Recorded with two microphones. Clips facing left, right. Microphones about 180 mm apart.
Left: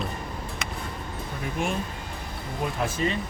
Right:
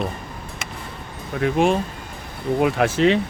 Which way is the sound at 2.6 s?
80° right.